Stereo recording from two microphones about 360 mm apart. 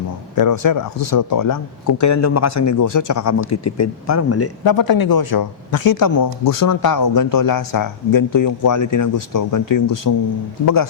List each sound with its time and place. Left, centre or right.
0.3 s speech: left
2.0 s speech: left
4.6 s speech: left